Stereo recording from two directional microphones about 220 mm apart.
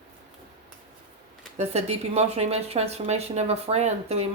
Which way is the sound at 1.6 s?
30° right (ahead or behind).